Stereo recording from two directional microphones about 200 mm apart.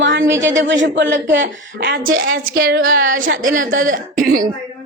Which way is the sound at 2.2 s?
50° right (ahead or behind).